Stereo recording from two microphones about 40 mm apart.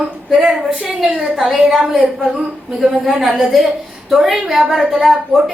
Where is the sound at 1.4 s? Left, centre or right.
Centre.